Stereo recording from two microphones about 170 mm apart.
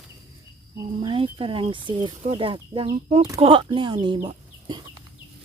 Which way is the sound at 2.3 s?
30° right (ahead or behind).